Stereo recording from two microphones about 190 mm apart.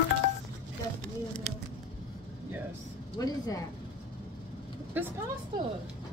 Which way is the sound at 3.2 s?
20° left (ahead or behind).